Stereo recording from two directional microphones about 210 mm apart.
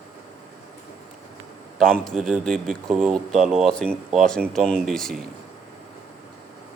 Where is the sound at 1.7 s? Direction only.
5° left (ahead or behind).